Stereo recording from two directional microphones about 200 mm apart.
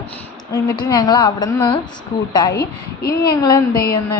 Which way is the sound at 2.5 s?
55° left (ahead or behind).